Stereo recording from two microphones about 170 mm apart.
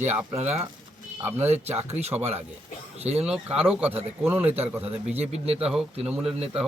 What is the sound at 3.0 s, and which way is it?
Speech, 40° right (ahead or behind).